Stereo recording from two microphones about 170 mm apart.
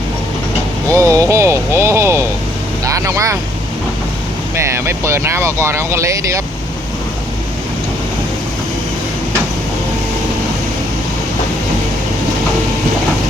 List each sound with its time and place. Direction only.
0.9 s vehicle: 20° right (ahead or behind)
4.5 s speech: 15° right (ahead or behind)